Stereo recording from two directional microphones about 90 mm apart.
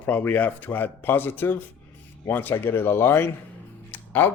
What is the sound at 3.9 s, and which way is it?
Music, 20° left (ahead or behind).